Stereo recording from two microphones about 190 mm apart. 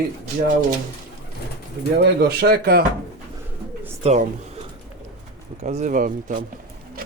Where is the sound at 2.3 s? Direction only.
55° right (ahead or behind).